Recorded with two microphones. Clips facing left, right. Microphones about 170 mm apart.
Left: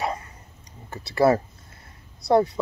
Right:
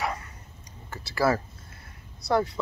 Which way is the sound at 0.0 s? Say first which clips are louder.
Left 3 dB; 25° left (ahead or behind).